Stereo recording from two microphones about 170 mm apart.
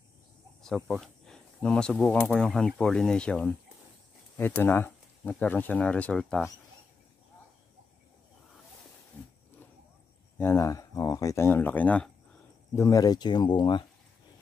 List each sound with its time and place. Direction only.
0.6 s speech: 5° left (ahead or behind)
9.1 s a sound: 10° left (ahead or behind)
10.3 s speech: 15° left (ahead or behind)
12.7 s speech: 20° left (ahead or behind)